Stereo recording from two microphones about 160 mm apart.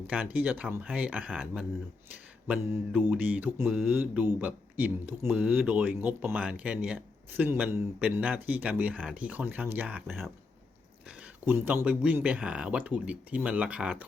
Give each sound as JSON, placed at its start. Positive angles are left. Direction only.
{"t": 0.1, "sound": "mantra", "side_deg": -10}